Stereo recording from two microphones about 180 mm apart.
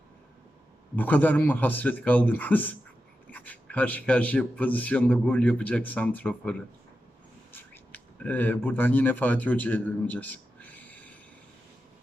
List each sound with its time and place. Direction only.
0.9 s speech: 10° left (ahead or behind)